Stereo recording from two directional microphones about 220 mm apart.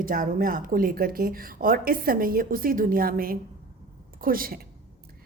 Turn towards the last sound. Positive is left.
turn(degrees=-40)  # may be behind; listen again after turning